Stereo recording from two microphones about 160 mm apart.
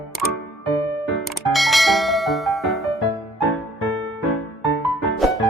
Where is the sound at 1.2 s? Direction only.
Centre (ahead or behind).